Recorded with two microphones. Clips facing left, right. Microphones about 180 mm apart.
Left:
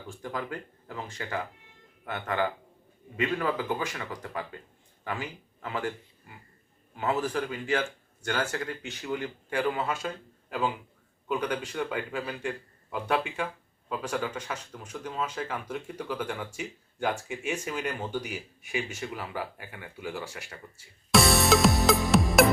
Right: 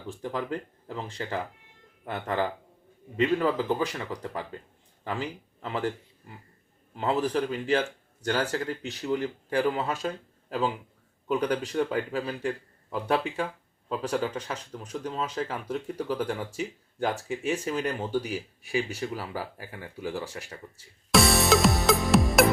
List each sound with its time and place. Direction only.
0.3 s speech: 30° right (ahead or behind)
11.3 s speech: 35° right (ahead or behind)
21.1 s music: centre (ahead or behind)